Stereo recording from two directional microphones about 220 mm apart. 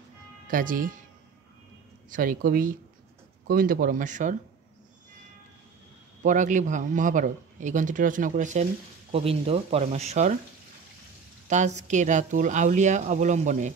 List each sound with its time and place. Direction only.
0.5 s speech: 40° right (ahead or behind)
2.0 s speech: 40° right (ahead or behind)
6.2 s speech: 35° right (ahead or behind)
11.4 s speech: 35° right (ahead or behind)